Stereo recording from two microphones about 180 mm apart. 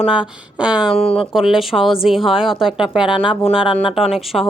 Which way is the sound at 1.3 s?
Centre (ahead or behind).